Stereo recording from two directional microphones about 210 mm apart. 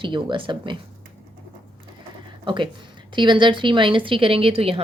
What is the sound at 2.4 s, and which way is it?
A woman's voice, 20° right (ahead or behind).